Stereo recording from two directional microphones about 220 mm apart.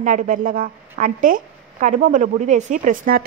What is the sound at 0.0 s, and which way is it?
A woman's voice, 35° right (ahead or behind).